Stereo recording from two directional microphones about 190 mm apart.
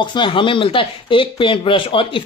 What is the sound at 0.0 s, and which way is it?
Speech, 25° left (ahead or behind).